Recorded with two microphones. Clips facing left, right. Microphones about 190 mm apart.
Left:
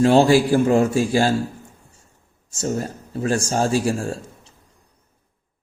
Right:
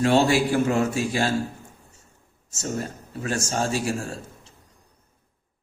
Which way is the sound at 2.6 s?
35° left (ahead or behind).